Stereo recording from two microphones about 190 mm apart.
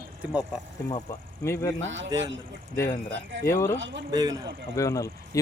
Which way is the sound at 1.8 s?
80° right.